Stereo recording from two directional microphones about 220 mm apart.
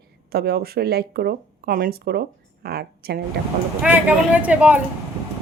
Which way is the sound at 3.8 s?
5° right (ahead or behind).